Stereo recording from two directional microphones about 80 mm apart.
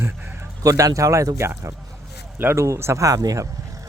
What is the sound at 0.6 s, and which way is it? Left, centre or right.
Speech, right.